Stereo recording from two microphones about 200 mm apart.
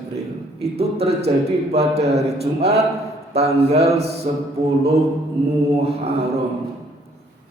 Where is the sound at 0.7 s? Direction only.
30° right (ahead or behind).